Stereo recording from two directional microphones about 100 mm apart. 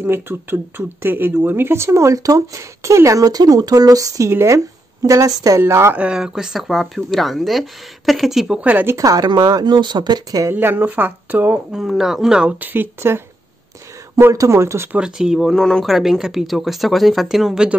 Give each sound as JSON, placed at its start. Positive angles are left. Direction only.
{"t": 0.0, "sound": "speech", "side_deg": -20}
{"t": 5.9, "sound": "speech", "side_deg": -10}
{"t": 8.6, "sound": "speech", "side_deg": -15}
{"t": 8.9, "sound": "speech", "side_deg": -40}
{"t": 10.5, "sound": "speech", "side_deg": -20}
{"t": 11.7, "sound": "speech", "side_deg": -5}
{"t": 14.2, "sound": "speech", "side_deg": -30}
{"t": 14.9, "sound": "speech", "side_deg": -10}
{"t": 15.5, "sound": "speech", "side_deg": 5}